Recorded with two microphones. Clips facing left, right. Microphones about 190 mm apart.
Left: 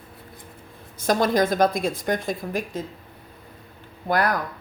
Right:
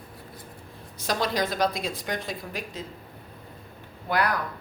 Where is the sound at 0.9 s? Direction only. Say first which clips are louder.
Left 7 dB; 50° left (ahead or behind).